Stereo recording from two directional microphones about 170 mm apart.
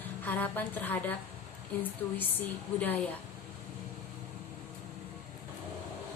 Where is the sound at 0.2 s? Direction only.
10° left (ahead or behind).